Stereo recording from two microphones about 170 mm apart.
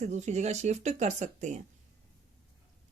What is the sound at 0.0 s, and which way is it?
Speech, 40° right (ahead or behind).